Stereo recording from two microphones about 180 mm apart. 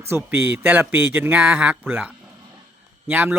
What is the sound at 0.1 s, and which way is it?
A man's voice, 10° right (ahead or behind).